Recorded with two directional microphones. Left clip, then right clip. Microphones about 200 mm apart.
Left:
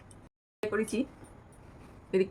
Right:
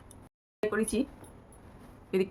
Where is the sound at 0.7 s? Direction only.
35° right (ahead or behind).